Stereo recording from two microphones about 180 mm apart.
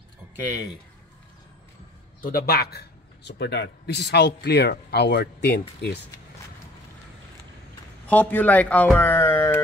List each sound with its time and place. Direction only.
2.2 s speech: 55° left (ahead or behind)
8.1 s a man's voice: 10° left (ahead or behind)